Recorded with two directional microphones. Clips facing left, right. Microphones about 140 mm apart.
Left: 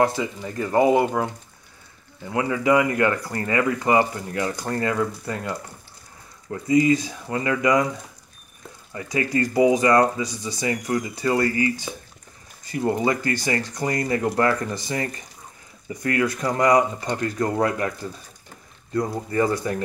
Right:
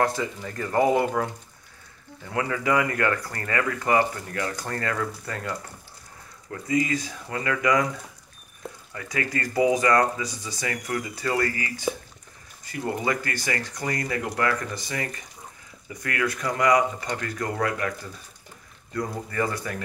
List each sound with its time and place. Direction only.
0.0 s speech: 15° left (ahead or behind)
2.3 s speech: 20° left (ahead or behind)
8.9 s speech: 25° left (ahead or behind)
12.7 s speech: 25° left (ahead or behind)
18.9 s speech: 30° left (ahead or behind)